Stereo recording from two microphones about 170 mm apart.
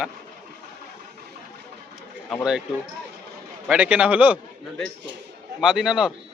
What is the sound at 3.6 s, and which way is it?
A man's voice, 5° right (ahead or behind).